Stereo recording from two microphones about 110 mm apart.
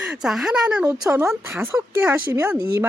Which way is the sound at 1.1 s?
20° right (ahead or behind).